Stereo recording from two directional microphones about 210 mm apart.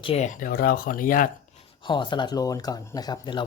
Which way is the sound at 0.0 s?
30° left (ahead or behind).